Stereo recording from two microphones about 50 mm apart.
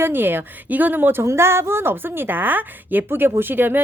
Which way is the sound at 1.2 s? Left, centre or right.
Right.